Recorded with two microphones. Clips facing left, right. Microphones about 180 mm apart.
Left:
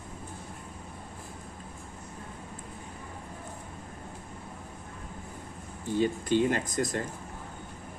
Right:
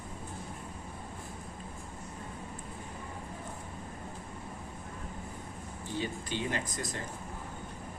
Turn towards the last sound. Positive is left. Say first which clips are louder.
# left 7 dB
turn(degrees=50)  # may be behind; listen again after turning